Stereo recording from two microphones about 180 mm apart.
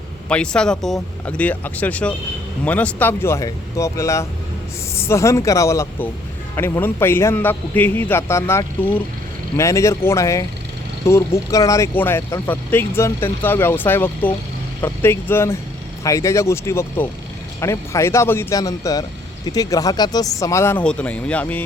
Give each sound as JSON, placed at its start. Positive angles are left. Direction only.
{"t": 0.3, "sound": "speech", "side_deg": 5}